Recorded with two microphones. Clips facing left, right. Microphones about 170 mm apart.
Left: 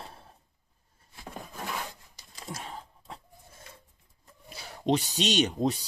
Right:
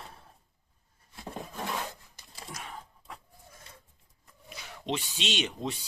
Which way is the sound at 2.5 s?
30° left (ahead or behind).